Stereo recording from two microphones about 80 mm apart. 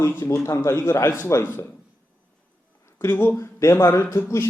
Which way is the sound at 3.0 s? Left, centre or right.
Left.